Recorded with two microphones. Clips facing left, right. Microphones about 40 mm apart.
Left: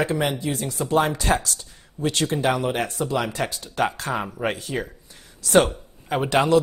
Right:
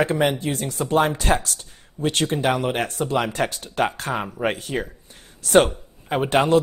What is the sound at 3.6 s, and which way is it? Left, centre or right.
Speech, right.